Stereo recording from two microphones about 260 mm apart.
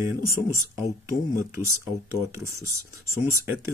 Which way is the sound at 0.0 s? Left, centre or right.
Centre.